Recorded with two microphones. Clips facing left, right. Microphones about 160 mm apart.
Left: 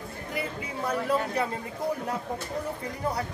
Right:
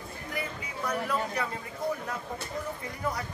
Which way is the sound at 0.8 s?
30° left (ahead or behind).